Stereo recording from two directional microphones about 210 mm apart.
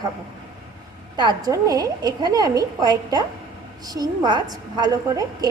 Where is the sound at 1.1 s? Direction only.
20° right (ahead or behind).